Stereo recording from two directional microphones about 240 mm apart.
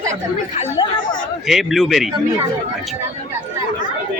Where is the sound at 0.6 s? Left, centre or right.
Left.